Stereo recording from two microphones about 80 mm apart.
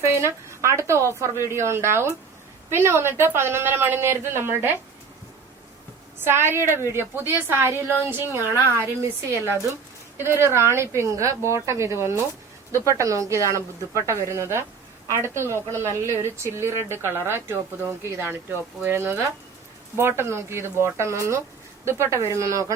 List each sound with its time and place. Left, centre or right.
0.0 s a woman's voice: right
6.1 s speech: right